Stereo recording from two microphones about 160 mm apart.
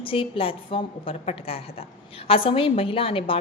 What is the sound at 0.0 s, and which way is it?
A woman's voice, 35° left (ahead or behind).